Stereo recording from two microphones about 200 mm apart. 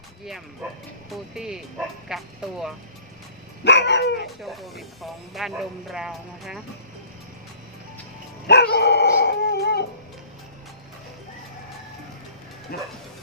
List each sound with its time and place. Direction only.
0.6 s speech: 5° right (ahead or behind)
3.6 s dog: 60° left (ahead or behind)
4.4 s speech: centre (ahead or behind)
8.4 s dog: 55° left (ahead or behind)
12.7 s bow-wow: 50° left (ahead or behind)